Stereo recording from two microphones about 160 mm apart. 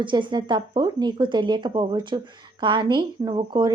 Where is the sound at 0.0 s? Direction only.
30° right (ahead or behind).